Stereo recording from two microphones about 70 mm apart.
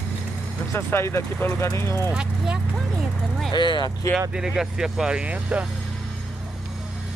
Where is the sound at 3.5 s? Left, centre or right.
Left.